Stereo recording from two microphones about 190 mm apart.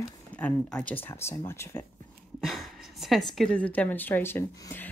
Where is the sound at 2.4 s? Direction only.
Centre (ahead or behind).